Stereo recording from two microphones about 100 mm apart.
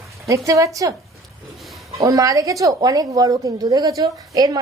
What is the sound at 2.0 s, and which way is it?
A woman's voice, 35° right (ahead or behind).